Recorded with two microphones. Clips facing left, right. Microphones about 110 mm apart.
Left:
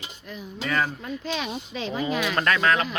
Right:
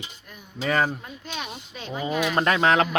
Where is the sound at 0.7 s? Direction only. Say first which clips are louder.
Right 3 dB; 20° right (ahead or behind).